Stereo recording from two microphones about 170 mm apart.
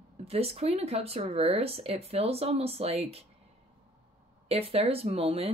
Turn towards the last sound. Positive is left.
turn(degrees=-35)  # may be behind; listen again after turning